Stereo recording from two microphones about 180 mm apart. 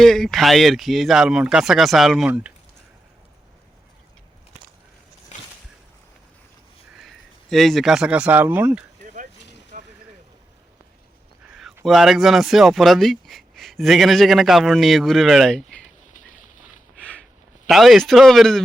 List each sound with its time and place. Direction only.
0.0 s speech: centre (ahead or behind)
7.5 s speech: centre (ahead or behind)
9.7 s vehicle: 45° right (ahead or behind)
11.9 s speech: centre (ahead or behind)
17.0 s a sound: 5° left (ahead or behind)
17.7 s speech: centre (ahead or behind)